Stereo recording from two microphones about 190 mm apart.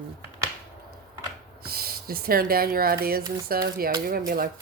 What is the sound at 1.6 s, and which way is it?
Speech, 50° right (ahead or behind).